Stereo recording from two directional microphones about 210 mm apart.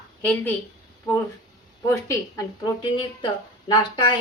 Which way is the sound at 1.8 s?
15° left (ahead or behind).